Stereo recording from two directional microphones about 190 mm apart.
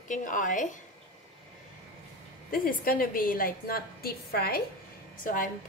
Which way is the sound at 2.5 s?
50° left (ahead or behind).